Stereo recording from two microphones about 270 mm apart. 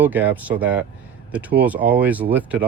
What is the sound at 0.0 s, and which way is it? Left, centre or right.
Speech, centre.